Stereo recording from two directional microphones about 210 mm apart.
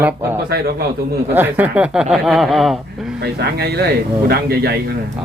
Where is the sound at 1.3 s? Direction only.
10° right (ahead or behind).